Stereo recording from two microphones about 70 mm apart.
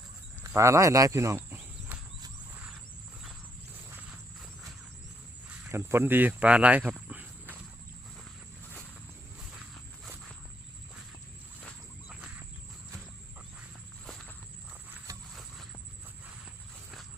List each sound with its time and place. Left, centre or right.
0.4 s speech: right
1.5 s insect: right
5.7 s speech: right
7.1 s a sound: right